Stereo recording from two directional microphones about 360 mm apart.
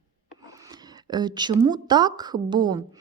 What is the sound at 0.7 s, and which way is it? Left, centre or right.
Speech, centre.